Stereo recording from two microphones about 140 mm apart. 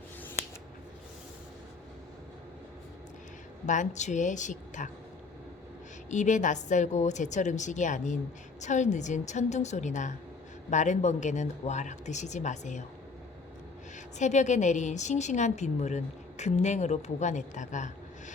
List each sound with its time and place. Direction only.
3.7 s a woman's voice: 60° left (ahead or behind)
6.1 s a woman's voice: 60° left (ahead or behind)
14.2 s a woman's voice: 60° left (ahead or behind)